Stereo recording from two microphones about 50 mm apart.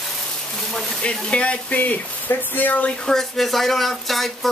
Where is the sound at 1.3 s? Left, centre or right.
Left.